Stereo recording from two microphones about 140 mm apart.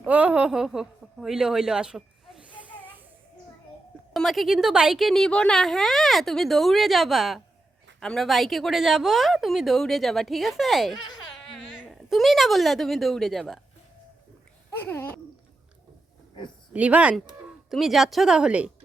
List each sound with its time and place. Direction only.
0.0 s a woman's voice: 10° right (ahead or behind)
4.1 s a woman's voice: centre (ahead or behind)
14.8 s a sound: 15° left (ahead or behind)
16.7 s a woman's voice: 10° right (ahead or behind)